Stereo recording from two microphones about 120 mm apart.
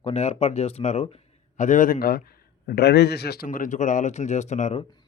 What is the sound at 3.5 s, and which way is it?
Speech, 90° left.